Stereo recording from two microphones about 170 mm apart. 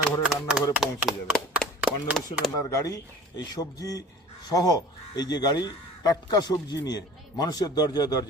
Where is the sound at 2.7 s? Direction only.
20° left (ahead or behind).